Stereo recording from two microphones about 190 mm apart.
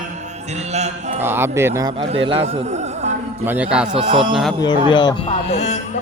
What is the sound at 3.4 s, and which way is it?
Speech, 10° right (ahead or behind).